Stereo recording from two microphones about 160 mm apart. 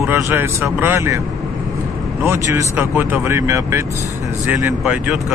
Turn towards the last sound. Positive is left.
turn(degrees=-5)  # may be behind; listen again after turning